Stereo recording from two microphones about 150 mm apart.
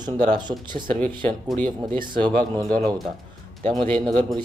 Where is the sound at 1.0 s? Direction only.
10° left (ahead or behind).